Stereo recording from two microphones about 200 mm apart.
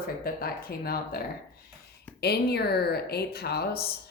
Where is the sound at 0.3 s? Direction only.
50° left (ahead or behind).